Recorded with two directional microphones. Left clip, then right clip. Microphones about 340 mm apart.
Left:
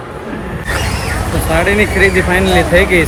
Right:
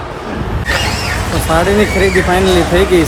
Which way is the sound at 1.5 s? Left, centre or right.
Centre.